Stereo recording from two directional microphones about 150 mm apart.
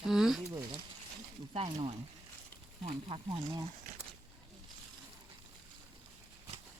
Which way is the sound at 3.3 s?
25° right (ahead or behind).